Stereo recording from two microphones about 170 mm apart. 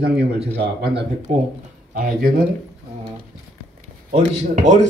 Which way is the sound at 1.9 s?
55° right (ahead or behind).